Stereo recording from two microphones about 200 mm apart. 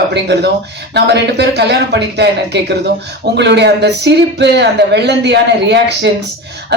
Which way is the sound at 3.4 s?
60° right (ahead or behind).